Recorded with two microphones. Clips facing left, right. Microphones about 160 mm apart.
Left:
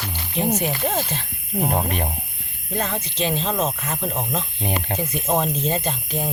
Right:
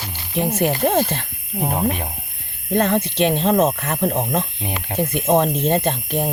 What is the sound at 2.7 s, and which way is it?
Speech, 60° right (ahead or behind).